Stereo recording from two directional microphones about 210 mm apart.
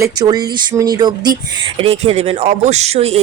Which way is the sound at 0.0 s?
20° right (ahead or behind).